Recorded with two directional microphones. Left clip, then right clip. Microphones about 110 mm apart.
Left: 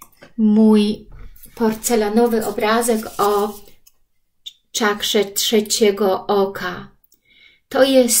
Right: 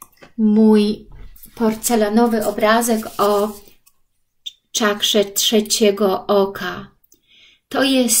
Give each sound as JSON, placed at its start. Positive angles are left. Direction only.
{"t": 0.4, "sound": "speech", "side_deg": -10}
{"t": 1.5, "sound": "speech", "side_deg": -40}
{"t": 7.3, "sound": "a sound", "side_deg": -40}